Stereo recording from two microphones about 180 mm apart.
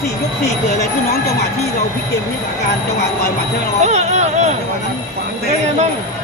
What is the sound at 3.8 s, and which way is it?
Speech, 40° right (ahead or behind).